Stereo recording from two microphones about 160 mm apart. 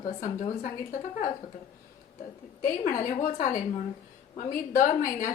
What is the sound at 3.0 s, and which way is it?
A woman's voice, 60° left (ahead or behind).